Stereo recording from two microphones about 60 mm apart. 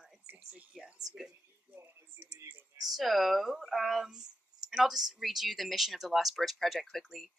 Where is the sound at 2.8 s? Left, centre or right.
Centre.